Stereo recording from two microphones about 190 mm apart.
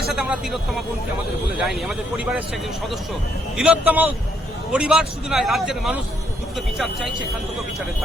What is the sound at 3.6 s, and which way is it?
Speech, 5° right (ahead or behind).